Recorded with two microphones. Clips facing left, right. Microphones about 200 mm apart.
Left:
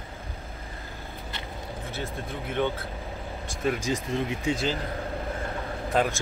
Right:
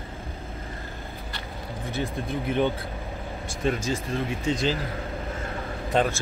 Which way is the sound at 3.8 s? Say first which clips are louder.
Even; 15° left (ahead or behind).